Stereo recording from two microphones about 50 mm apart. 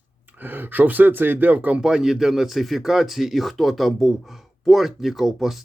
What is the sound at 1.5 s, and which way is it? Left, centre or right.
Speech, right.